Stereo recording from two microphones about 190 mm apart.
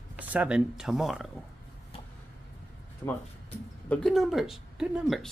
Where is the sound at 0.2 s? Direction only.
10° right (ahead or behind).